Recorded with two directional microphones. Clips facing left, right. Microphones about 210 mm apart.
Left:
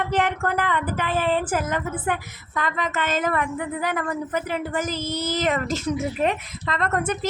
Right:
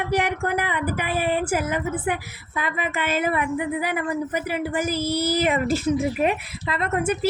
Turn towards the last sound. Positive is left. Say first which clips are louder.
# right 1 dB
turn(degrees=-10)  # may be behind; listen again after turning